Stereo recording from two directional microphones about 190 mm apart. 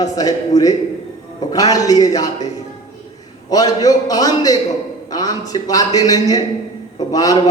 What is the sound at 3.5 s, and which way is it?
A man's voice, 20° left (ahead or behind).